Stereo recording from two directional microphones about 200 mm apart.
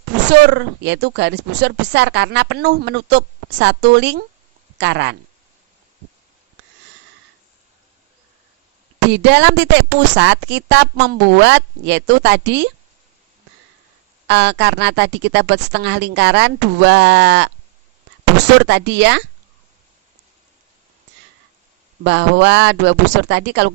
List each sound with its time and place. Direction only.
0.3 s a woman's voice: 60° right (ahead or behind)
9.0 s a woman's voice: 60° right (ahead or behind)
14.3 s a woman's voice: 60° right (ahead or behind)
18.6 s a woman's voice: 60° right (ahead or behind)
22.0 s a woman's voice: 60° right (ahead or behind)